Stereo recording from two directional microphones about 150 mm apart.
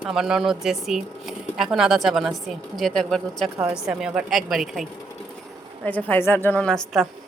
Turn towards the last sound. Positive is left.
turn(degrees=0)  # may be behind; listen again after turning